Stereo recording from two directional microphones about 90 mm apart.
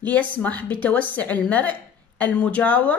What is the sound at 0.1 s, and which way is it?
A woman's voice, 15° left (ahead or behind).